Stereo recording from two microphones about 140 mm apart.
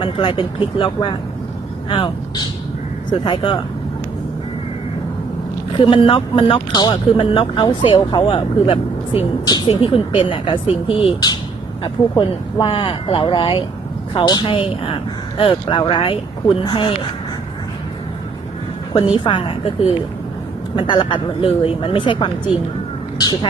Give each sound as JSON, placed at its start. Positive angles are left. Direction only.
{"t": 0.0, "sound": "speech", "side_deg": 35}
{"t": 5.7, "sound": "speech", "side_deg": 35}
{"t": 18.9, "sound": "speech", "side_deg": 35}